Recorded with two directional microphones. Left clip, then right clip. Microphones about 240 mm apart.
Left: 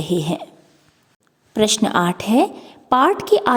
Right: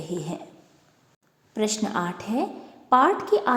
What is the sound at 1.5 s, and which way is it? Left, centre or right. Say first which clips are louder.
A woman's voice: left 9 dB; left.